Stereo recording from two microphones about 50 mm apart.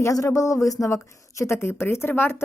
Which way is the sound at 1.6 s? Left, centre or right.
Left.